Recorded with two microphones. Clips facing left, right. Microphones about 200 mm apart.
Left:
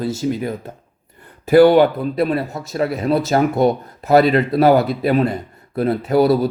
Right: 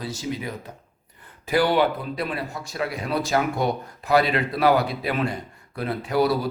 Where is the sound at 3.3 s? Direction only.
40° left (ahead or behind).